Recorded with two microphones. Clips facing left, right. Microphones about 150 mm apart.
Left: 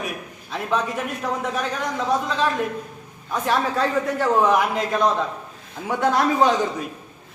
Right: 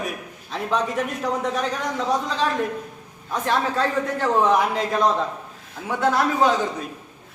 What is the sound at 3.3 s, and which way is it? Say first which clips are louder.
A man's voice: left 1 dB; 10° left (ahead or behind).